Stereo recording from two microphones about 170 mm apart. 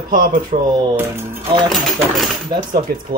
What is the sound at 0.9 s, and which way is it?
Speech, 15° right (ahead or behind).